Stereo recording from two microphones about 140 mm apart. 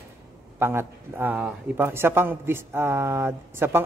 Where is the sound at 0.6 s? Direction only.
15° right (ahead or behind).